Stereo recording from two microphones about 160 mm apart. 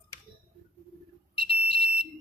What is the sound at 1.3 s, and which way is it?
Smoke detector, 35° left (ahead or behind).